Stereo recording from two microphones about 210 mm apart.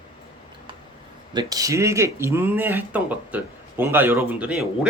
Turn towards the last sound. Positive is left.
turn(degrees=-5)  # may be behind; listen again after turning